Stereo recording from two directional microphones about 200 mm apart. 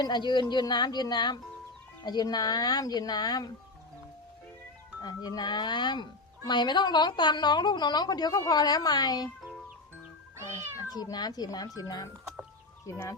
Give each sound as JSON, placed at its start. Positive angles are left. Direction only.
{"t": 0.0, "sound": "a woman's voice", "side_deg": 20}
{"t": 5.0, "sound": "a woman's voice", "side_deg": 20}
{"t": 10.8, "sound": "a woman's voice", "side_deg": 20}